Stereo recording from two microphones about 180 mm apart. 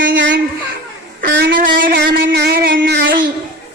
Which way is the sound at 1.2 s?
55° right (ahead or behind).